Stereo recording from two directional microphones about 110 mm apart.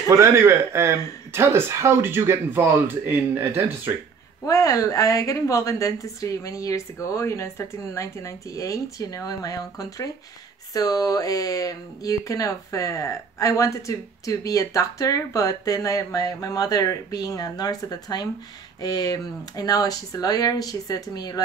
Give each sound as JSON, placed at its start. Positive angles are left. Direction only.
{"t": 0.1, "sound": "speech", "side_deg": -25}
{"t": 4.5, "sound": "a woman's voice", "side_deg": 30}